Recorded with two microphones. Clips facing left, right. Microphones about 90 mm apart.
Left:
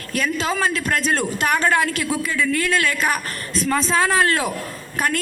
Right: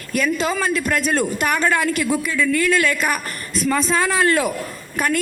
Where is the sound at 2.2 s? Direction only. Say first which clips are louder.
Right 3 dB; 45° left (ahead or behind).